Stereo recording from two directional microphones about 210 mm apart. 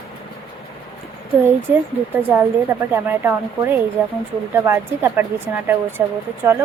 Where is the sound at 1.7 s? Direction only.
5° right (ahead or behind).